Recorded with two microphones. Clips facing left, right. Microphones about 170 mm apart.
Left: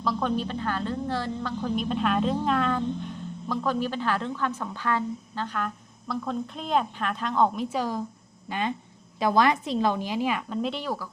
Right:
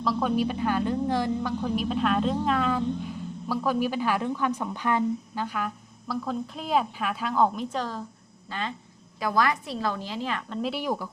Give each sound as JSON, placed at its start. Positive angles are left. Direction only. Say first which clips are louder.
{"t": 0.0, "sound": "a woman's voice", "louder": "right 2 dB", "side_deg": -5}
{"t": 10.6, "sound": "a woman's voice", "louder": "right 1 dB", "side_deg": -10}